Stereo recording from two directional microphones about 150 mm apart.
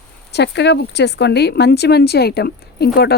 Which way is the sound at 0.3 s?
90° left.